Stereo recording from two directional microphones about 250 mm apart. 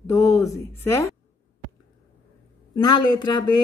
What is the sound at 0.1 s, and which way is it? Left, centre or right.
Speech, centre.